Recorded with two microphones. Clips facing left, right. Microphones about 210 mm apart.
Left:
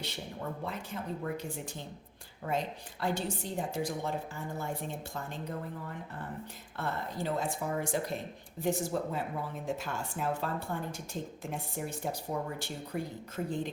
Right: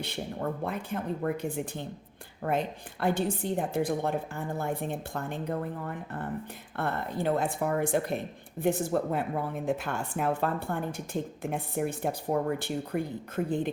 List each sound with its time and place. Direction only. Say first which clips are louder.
0.0 s a woman's voice: right 6 dB; 55° right (ahead or behind)